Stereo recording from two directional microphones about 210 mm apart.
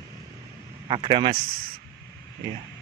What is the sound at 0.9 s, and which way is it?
Speech, 25° right (ahead or behind).